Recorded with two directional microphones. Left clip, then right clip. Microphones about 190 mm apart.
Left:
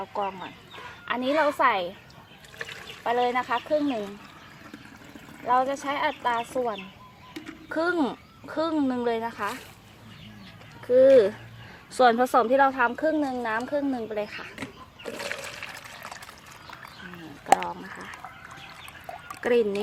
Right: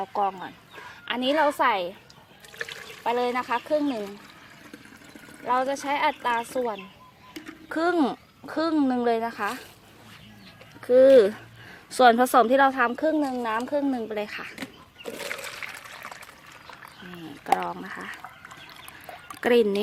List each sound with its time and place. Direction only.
0.0 s speech: 45° right (ahead or behind)
3.0 s speech: 55° right (ahead or behind)
5.5 s speech: 50° right (ahead or behind)
7.7 s speech: 50° right (ahead or behind)
10.8 s speech: 50° right (ahead or behind)
11.9 s speech: 35° right (ahead or behind); by 14.7 s 50° right (ahead or behind)
15.3 s water: 10° right (ahead or behind)
17.4 s speech: 50° right (ahead or behind)
19.4 s speech: 50° right (ahead or behind)